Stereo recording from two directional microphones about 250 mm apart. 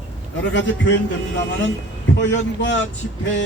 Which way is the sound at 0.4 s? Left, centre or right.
Left.